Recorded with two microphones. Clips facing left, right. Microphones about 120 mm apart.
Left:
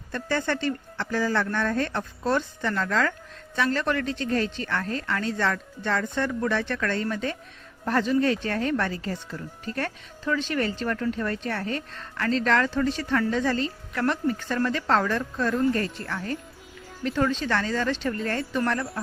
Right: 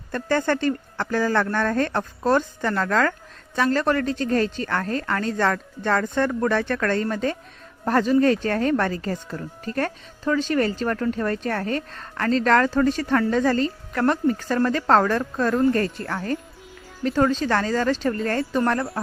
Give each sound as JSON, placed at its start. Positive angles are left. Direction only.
{"t": 0.1, "sound": "speech", "side_deg": -45}